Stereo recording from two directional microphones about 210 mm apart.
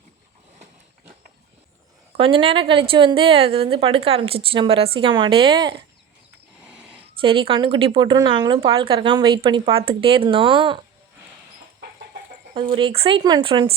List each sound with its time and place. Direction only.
2.1 s a woman's voice: 25° right (ahead or behind)
7.2 s a woman's voice: 25° right (ahead or behind)
12.5 s a woman's voice: 25° right (ahead or behind)